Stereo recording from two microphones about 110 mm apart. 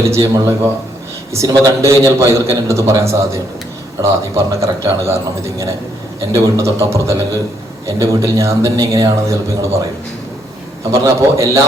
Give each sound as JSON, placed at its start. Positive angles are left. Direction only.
{"t": 0.1, "sound": "a man's voice", "side_deg": -30}
{"t": 10.9, "sound": "a man's voice", "side_deg": -25}